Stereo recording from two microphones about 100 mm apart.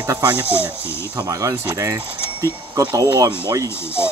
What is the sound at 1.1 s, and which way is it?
Speech, 30° right (ahead or behind).